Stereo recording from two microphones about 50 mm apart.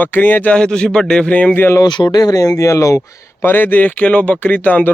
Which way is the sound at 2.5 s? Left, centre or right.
Left.